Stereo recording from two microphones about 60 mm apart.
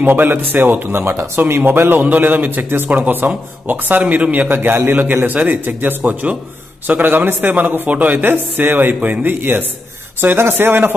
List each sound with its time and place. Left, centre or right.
0.0 s a man's voice: right
0.9 s speech: right
1.4 s a man's voice: right